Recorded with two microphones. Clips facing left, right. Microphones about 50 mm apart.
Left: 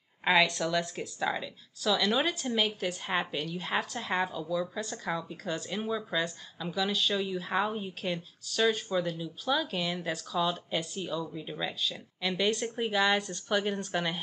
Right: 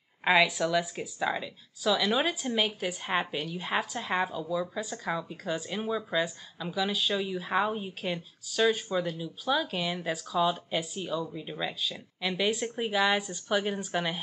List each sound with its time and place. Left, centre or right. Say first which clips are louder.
0.2 s speech: right 2 dB; centre